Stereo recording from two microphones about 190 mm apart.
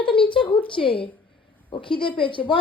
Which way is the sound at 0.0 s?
25° left (ahead or behind).